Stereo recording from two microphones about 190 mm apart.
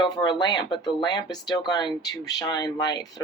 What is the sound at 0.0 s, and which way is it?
Speech, 20° left (ahead or behind).